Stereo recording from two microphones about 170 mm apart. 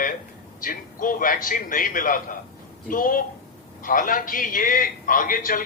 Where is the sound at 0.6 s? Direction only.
55° left (ahead or behind).